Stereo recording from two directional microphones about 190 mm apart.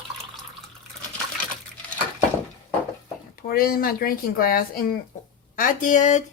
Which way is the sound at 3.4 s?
50° left (ahead or behind).